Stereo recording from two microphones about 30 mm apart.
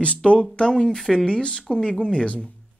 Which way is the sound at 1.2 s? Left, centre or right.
Left.